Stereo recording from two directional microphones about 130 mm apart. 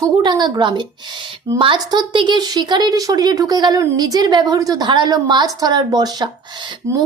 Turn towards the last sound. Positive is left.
turn(degrees=-20)  # may be behind; listen again after turning